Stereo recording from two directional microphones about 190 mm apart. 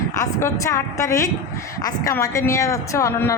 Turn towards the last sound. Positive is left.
turn(degrees=15)  # may be behind; listen again after turning